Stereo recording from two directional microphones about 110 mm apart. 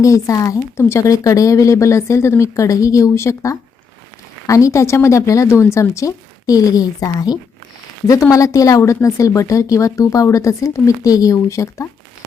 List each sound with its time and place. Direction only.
0.0 s a woman's voice: 30° left (ahead or behind)